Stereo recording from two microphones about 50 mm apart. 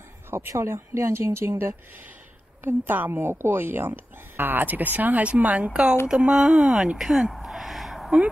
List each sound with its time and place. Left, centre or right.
0.3 s speech: right
2.6 s speech: right; by 8.1 s centre